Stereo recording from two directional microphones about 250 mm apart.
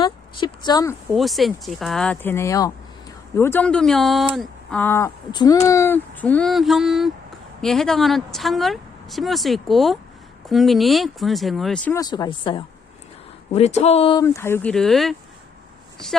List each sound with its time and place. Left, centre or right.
0.0 s a woman's voice: centre
1.1 s speech: centre
11.9 s speech: centre